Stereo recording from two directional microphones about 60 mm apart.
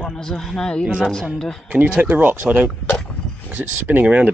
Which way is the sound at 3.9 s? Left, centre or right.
Right.